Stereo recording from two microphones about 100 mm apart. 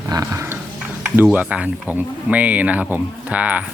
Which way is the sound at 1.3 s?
15° right (ahead or behind).